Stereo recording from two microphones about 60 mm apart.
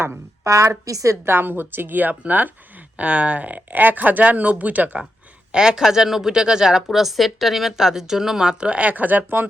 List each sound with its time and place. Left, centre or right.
0.4 s a woman's voice: right
1.2 s speech: right
5.5 s a woman's voice: centre; by 9.5 s right